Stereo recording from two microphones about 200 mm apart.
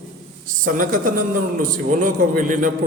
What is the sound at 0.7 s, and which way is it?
A man's voice, 45° right (ahead or behind).